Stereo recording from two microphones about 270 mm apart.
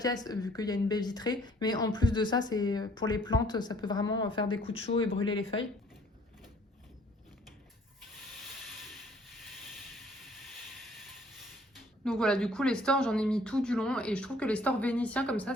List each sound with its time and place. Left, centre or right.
0.0 s speech: centre
11.7 s speech: centre